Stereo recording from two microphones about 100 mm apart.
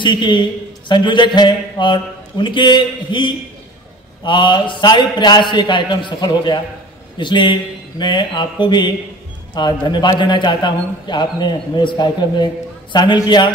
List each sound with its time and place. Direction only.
0.0 s a man's voice: 50° left (ahead or behind)